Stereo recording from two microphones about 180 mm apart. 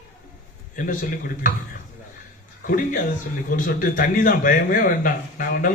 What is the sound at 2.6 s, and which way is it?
A man's voice, 50° left (ahead or behind).